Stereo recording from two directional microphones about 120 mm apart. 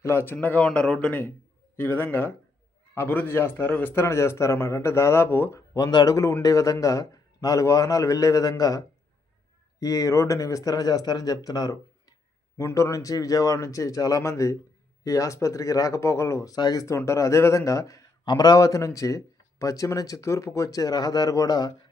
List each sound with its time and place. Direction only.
0.0 s a man's voice: 20° left (ahead or behind)
9.8 s speech: 30° left (ahead or behind)